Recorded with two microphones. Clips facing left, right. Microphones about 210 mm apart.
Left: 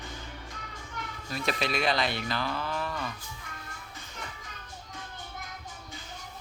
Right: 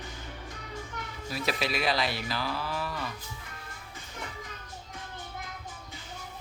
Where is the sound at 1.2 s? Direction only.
5° right (ahead or behind).